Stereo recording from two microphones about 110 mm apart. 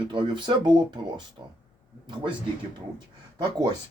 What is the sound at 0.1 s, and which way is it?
Speech, 45° right (ahead or behind).